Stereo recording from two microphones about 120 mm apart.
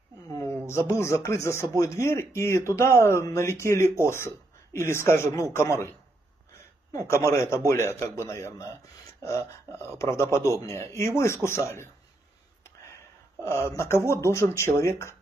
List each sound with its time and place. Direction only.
0.3 s speech: 25° left (ahead or behind)
7.1 s speech: 20° left (ahead or behind)